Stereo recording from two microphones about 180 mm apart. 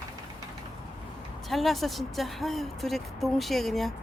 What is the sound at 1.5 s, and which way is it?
Speech, centre (ahead or behind).